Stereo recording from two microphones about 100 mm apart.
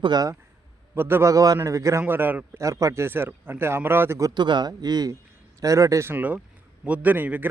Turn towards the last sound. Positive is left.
turn(degrees=-20)  # may be behind; listen again after turning